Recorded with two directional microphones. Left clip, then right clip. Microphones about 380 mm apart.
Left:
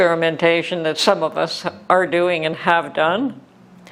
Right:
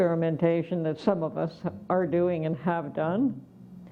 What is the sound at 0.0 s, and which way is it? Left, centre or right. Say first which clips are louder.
Speech: left 10 dB; centre.